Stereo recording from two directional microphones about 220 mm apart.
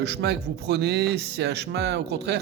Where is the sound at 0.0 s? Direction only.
50° right (ahead or behind).